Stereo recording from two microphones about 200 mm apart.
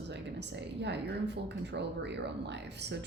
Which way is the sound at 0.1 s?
60° right (ahead or behind).